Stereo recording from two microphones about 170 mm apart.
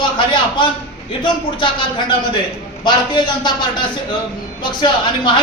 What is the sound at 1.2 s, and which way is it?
Speech, 30° left (ahead or behind).